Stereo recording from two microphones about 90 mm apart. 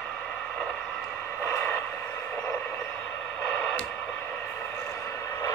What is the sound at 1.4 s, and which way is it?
Vehicle, 20° left (ahead or behind).